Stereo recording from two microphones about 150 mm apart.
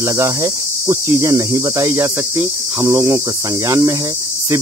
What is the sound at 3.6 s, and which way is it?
Cricket, 20° right (ahead or behind).